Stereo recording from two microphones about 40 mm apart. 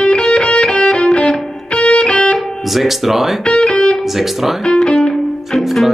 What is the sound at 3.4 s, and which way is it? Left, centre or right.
Music, left.